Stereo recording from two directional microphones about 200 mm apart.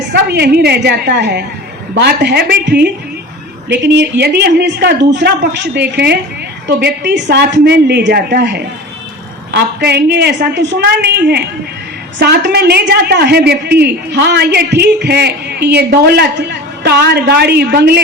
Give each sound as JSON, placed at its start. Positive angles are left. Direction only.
{"t": 0.1, "sound": "a woman's voice", "side_deg": -55}